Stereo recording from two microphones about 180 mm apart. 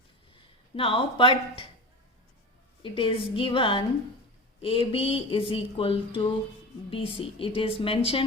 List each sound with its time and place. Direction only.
0.8 s a woman's voice: 30° left (ahead or behind)
2.8 s a woman's voice: 30° left (ahead or behind)